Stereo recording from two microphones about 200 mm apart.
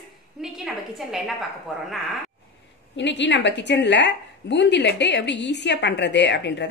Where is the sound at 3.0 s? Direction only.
60° left (ahead or behind).